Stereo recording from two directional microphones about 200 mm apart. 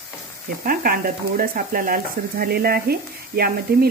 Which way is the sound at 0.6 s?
45° right (ahead or behind).